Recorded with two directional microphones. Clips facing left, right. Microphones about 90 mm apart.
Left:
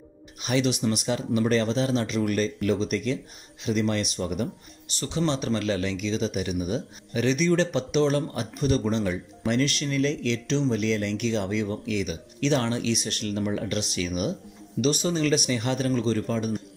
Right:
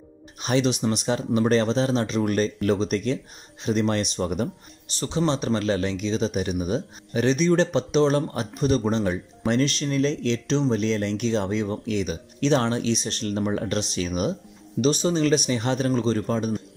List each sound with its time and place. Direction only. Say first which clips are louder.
0.4 s speech: right 2 dB; 30° right (ahead or behind)
5.0 s speech: right 2 dB; 25° right (ahead or behind)